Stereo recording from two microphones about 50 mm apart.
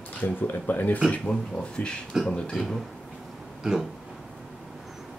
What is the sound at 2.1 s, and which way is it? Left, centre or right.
Speech, centre.